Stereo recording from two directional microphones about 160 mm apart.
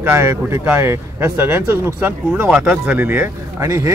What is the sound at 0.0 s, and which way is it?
Speech, 15° right (ahead or behind).